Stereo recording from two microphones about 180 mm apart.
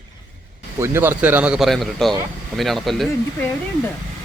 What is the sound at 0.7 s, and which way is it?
A man's voice, 15° right (ahead or behind).